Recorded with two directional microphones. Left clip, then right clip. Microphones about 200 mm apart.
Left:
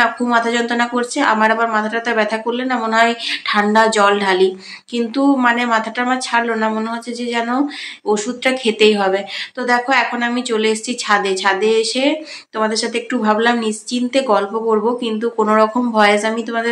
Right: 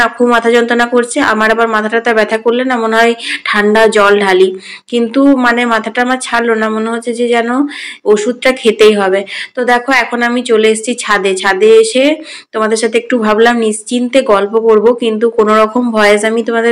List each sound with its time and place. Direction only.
0.0 s speech: 15° right (ahead or behind)